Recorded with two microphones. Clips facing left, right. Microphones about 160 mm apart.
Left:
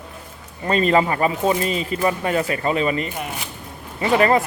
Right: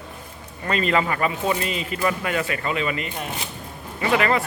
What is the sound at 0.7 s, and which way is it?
Speech, 35° left (ahead or behind).